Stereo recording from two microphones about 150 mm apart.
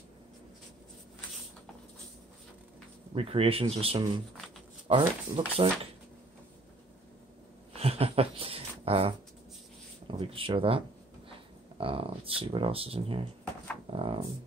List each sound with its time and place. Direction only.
3.2 s speech: 40° right (ahead or behind)
7.7 s a sound: 40° right (ahead or behind)
10.0 s speech: 35° right (ahead or behind)
11.8 s speech: 35° right (ahead or behind)